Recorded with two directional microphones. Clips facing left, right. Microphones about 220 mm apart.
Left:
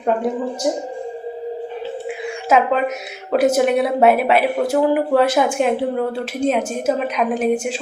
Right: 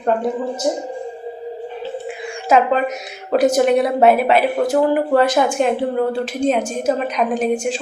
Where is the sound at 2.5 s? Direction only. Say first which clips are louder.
Right 1 dB; 5° left (ahead or behind).